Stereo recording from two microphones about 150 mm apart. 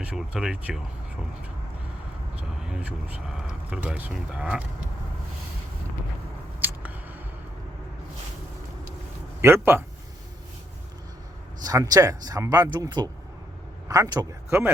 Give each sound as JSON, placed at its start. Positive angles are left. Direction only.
{"t": 0.0, "sound": "speech", "side_deg": -5}
{"t": 2.6, "sound": "speech", "side_deg": -5}
{"t": 6.6, "sound": "a sound", "side_deg": -10}
{"t": 9.4, "sound": "speech", "side_deg": -15}
{"t": 11.6, "sound": "speech", "side_deg": -25}